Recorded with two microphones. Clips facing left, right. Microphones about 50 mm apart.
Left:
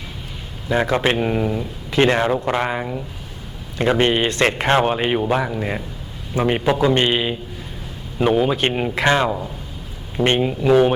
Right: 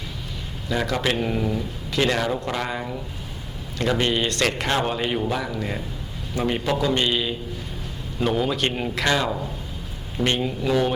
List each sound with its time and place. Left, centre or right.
0.7 s a man's voice: left